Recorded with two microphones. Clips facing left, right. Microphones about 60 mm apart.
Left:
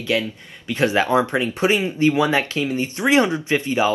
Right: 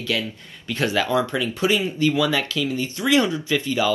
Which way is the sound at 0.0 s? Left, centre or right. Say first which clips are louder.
Left 4 dB; left.